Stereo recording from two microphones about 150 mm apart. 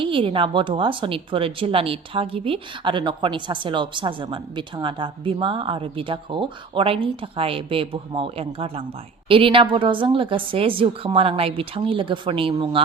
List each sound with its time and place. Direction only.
0.0 s speech: 35° right (ahead or behind)